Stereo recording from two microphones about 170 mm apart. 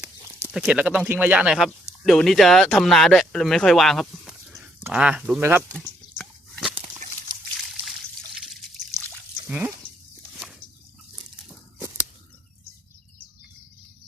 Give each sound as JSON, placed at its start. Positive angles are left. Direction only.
{"t": 0.2, "sound": "a sound", "side_deg": -15}
{"t": 0.5, "sound": "speech", "side_deg": -5}
{"t": 6.1, "sound": "biting", "side_deg": 0}
{"t": 9.5, "sound": "speech", "side_deg": -10}